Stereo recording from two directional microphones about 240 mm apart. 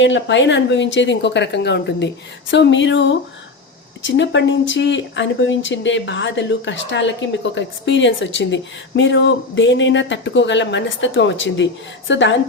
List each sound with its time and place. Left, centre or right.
0.0 s speech: left